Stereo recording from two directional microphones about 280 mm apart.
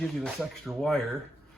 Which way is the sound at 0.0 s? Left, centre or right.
Centre.